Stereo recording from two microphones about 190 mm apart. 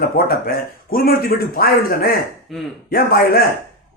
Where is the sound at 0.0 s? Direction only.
55° left (ahead or behind).